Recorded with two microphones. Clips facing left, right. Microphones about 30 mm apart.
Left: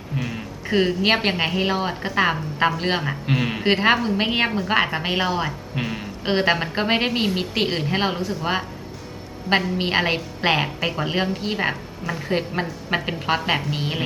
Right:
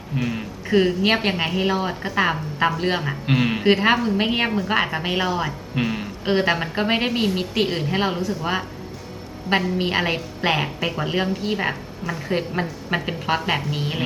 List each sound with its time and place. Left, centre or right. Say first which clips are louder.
0.2 s a sound: right 4 dB; centre
0.7 s a woman's voice: right 1 dB; centre
3.2 s speech: right 5 dB; centre
3.6 s a woman's voice: left 1 dB; centre
5.7 s a sound: right 3 dB; centre
6.2 s a woman's voice: even; centre
9.7 s a woman's voice: left 1 dB; centre